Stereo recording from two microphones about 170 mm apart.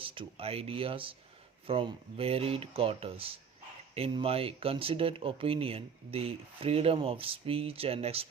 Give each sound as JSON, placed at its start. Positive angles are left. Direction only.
{"t": 0.0, "sound": "speech", "side_deg": -30}